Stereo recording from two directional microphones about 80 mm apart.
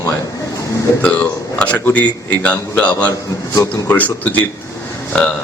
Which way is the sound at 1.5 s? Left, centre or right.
Centre.